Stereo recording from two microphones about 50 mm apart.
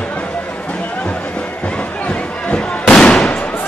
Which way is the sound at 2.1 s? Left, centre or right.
Left.